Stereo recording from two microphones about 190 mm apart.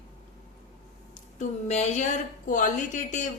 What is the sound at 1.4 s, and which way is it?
A woman's voice, 35° left (ahead or behind).